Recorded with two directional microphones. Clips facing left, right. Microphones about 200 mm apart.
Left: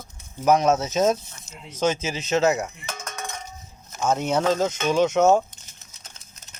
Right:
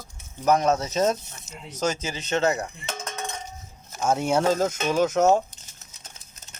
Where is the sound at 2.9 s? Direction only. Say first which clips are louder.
Right 2 dB; 25° right (ahead or behind).